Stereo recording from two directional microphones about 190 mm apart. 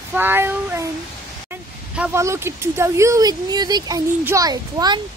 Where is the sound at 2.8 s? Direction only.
15° right (ahead or behind).